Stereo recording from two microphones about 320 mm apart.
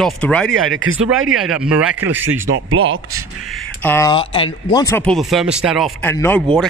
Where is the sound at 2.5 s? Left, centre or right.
Right.